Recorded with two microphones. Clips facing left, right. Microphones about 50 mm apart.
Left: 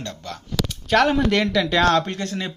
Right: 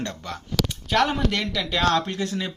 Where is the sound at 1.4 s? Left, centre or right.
Left.